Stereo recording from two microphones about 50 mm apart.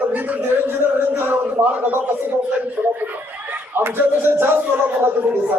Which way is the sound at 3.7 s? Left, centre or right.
Right.